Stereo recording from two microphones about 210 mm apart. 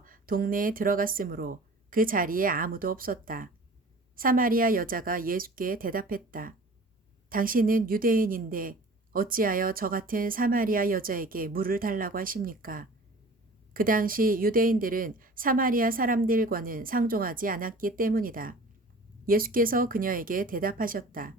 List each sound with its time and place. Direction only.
0.0 s a woman's voice: 40° right (ahead or behind)